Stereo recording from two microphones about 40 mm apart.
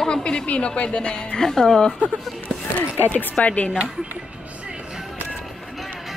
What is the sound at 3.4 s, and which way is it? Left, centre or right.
Speech, left.